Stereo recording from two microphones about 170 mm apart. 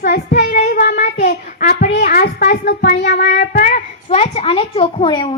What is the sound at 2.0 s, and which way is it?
Speech, 60° left (ahead or behind).